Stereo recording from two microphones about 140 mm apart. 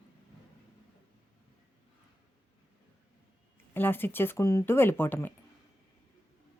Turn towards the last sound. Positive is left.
turn(degrees=15)  # may be behind; listen again after turning